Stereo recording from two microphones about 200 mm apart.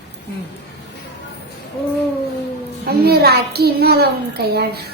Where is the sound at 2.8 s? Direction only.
50° right (ahead or behind).